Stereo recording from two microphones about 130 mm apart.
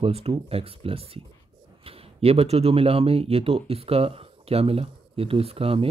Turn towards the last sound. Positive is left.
turn(degrees=-45)  # may be behind; listen again after turning